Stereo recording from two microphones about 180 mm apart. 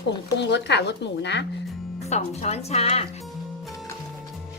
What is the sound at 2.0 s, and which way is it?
Speech, 35° left (ahead or behind).